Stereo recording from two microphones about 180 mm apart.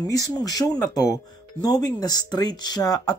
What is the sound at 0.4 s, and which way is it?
Speech, 20° left (ahead or behind).